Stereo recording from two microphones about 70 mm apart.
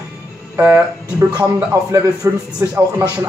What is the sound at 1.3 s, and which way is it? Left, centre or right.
Speech, right.